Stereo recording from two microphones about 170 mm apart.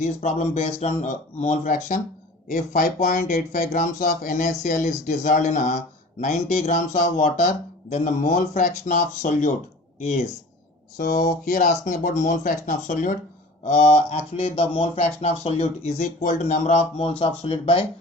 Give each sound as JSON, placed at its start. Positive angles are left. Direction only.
{"t": 0.0, "sound": "speech", "side_deg": 40}
{"t": 10.9, "sound": "speech", "side_deg": 70}
{"t": 11.3, "sound": "speech", "side_deg": 50}